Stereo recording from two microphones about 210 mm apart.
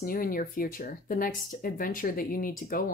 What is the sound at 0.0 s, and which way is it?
Speech, 40° left (ahead or behind).